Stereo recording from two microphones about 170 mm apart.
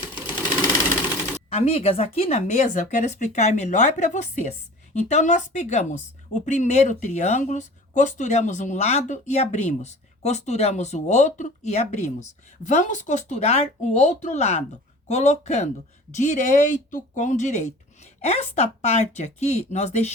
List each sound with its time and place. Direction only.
1.5 s a woman's voice: 35° left (ahead or behind)